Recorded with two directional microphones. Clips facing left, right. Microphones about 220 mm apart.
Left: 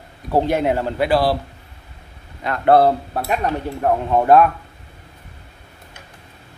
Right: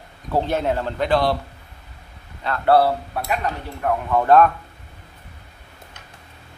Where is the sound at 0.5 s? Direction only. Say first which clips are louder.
Left 3 dB; 15° left (ahead or behind).